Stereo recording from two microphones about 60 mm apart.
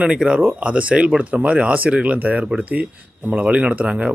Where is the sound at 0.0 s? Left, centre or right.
Centre.